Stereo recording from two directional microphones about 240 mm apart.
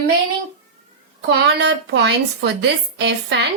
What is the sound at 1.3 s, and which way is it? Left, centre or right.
Speech, right.